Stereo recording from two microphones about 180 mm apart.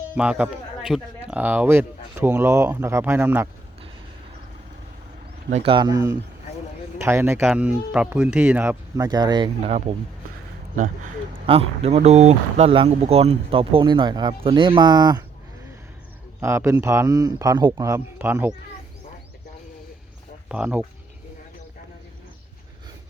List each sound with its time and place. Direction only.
0.2 s a man's voice: 10° right (ahead or behind)
5.5 s speech: 40° right (ahead or behind)
5.7 s a man's voice: 20° right (ahead or behind)
9.0 s speech: 20° right (ahead or behind)
10.8 s speech: 45° right (ahead or behind); by 15.2 s 20° right (ahead or behind)
16.4 s a man's voice: 15° right (ahead or behind)
20.5 s a man's voice: 5° right (ahead or behind)